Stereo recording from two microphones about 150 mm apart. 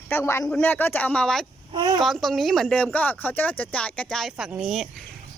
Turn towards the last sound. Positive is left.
turn(degrees=0)  # may be behind; listen again after turning